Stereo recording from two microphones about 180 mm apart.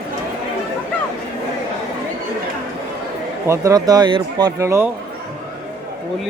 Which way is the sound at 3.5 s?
15° right (ahead or behind).